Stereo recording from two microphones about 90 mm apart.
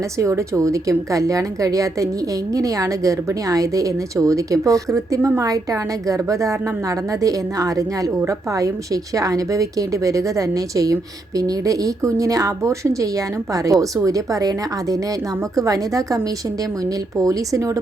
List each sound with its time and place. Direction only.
0.2 s a woman's voice: 35° right (ahead or behind)